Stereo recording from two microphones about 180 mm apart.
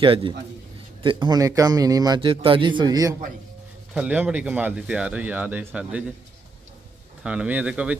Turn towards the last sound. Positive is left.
turn(degrees=-5)  # may be behind; listen again after turning